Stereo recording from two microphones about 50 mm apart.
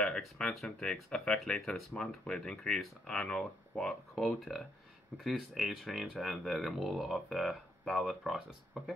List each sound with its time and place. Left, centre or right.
0.4 s speech: left
4.2 s speech: centre